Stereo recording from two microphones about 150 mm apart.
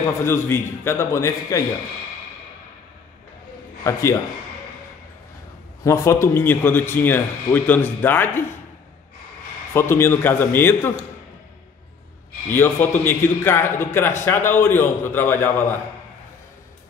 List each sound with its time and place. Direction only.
0.2 s speech: 15° left (ahead or behind)
3.8 s a man's voice: 20° left (ahead or behind)
5.9 s speech: 20° left (ahead or behind)
9.8 s speech: 15° left (ahead or behind)
12.4 s speech: 15° left (ahead or behind)